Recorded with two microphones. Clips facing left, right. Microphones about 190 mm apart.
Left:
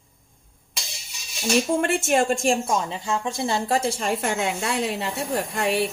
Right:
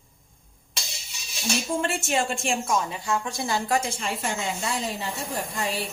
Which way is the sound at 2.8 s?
25° left (ahead or behind).